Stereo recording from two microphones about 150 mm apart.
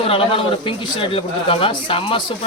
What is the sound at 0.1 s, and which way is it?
A man's voice, 35° left (ahead or behind).